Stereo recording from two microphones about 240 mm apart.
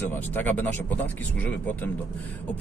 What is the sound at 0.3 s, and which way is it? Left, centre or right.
Speech, centre.